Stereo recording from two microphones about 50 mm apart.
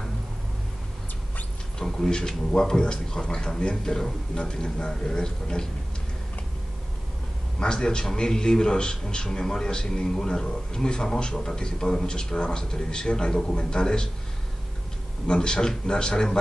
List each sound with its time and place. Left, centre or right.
1.8 s a man's voice: centre
7.5 s a man's voice: centre
15.2 s a man's voice: centre